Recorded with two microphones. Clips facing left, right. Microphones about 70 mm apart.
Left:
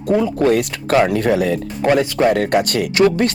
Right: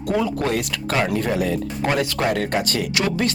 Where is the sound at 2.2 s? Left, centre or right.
Left.